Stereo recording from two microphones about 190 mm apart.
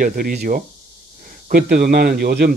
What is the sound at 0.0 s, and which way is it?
A man's voice, 50° right (ahead or behind).